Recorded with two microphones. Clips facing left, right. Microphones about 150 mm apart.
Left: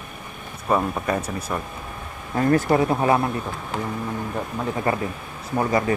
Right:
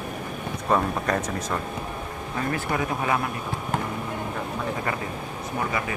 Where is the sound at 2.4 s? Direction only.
40° left (ahead or behind).